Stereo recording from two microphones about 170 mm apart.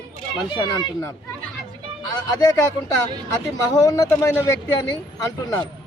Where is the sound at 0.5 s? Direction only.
25° left (ahead or behind).